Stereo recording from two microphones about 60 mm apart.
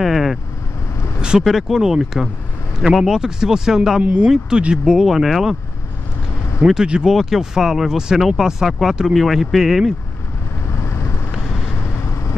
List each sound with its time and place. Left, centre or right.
0.0 s speech: centre
1.4 s speech: centre
6.6 s speech: centre
10.7 s vehicle: left